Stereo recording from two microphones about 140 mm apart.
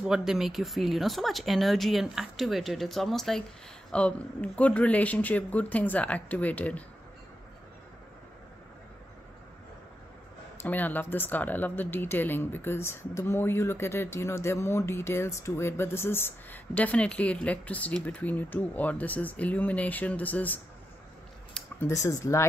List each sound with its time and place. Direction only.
0.0 s speech: 5° right (ahead or behind)
10.6 s speech: 10° left (ahead or behind)